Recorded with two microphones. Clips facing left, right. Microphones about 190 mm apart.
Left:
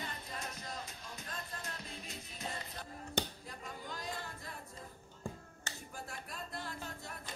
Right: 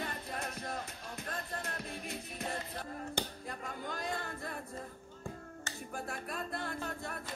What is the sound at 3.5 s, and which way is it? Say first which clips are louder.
A capella: right 5 dB; 60° right (ahead or behind).